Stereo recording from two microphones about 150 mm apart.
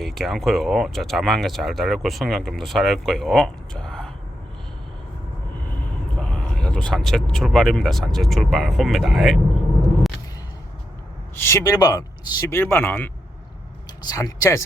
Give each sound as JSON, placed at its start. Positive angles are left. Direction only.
{"t": 0.0, "sound": "speech", "side_deg": 0}
{"t": 6.1, "sound": "speech", "side_deg": 5}
{"t": 11.4, "sound": "speech", "side_deg": 20}
{"t": 14.1, "sound": "speech", "side_deg": 25}